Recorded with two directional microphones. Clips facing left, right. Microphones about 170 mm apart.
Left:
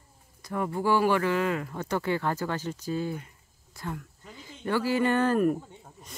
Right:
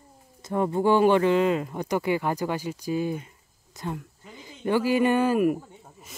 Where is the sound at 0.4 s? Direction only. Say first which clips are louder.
Right 5 dB; 25° right (ahead or behind).